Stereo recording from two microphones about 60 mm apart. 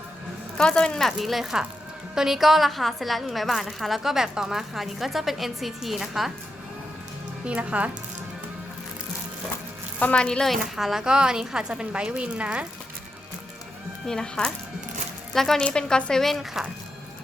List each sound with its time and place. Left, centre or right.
0.5 s a woman's voice: centre
7.4 s speech: right
10.0 s speech: centre
10.5 s a woman's voice: centre
11.0 s a woman's voice: centre
14.1 s a woman's voice: centre
16.2 s a woman's voice: centre